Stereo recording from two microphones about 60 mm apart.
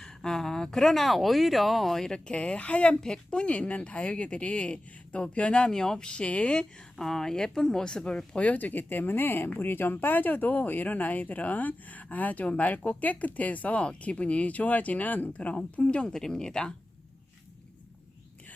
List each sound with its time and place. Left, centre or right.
0.0 s speech: centre
2.1 s speech: centre